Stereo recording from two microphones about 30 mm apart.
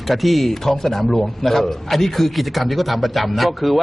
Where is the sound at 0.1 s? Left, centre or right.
Centre.